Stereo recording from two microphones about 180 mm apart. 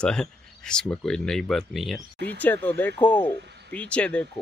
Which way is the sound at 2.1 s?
70° right (ahead or behind).